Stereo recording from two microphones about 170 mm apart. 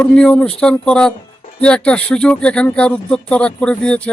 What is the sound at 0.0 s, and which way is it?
Speech, 5° left (ahead or behind).